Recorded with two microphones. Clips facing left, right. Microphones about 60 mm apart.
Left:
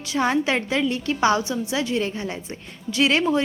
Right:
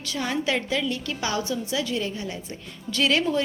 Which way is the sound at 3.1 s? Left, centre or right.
Left.